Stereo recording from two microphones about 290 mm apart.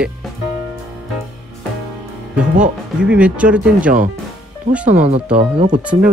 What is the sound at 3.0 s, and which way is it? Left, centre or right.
Speech, centre.